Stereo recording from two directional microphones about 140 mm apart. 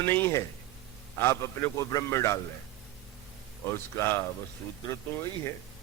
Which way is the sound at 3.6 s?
15° left (ahead or behind).